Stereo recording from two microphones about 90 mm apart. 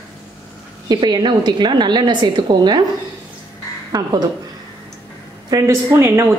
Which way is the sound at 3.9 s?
45° right (ahead or behind).